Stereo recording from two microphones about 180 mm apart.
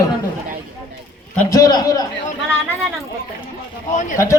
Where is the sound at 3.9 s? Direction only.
40° left (ahead or behind).